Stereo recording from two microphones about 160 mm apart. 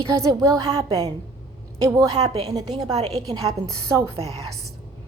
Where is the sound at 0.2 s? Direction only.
25° right (ahead or behind).